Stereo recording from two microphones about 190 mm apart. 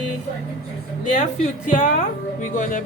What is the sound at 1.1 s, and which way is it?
Speech, 40° left (ahead or behind).